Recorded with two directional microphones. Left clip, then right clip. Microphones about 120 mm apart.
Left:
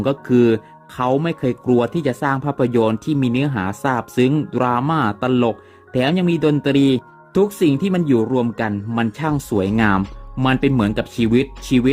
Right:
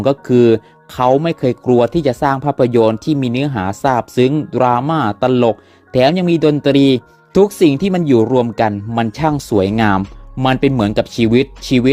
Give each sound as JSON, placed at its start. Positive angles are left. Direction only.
{"t": 0.0, "sound": "speech", "side_deg": -35}
{"t": 9.6, "sound": "speech", "side_deg": -45}